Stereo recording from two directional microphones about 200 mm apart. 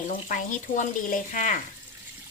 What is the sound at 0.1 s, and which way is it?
Speech, 40° left (ahead or behind).